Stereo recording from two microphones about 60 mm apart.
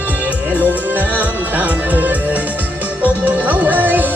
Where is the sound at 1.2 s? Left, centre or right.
Right.